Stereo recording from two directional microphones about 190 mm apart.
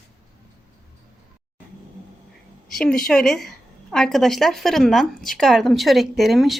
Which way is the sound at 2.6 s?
Centre (ahead or behind).